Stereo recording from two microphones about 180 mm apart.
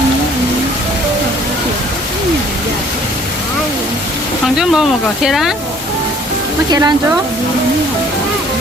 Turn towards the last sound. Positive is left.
turn(degrees=-20)  # may be behind; listen again after turning